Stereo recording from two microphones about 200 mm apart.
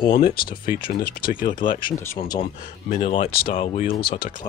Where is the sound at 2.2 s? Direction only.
25° left (ahead or behind).